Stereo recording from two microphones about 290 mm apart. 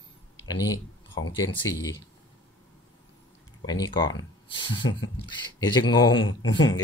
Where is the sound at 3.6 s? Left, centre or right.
Centre.